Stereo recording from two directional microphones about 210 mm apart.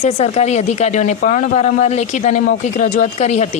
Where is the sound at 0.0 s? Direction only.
30° left (ahead or behind).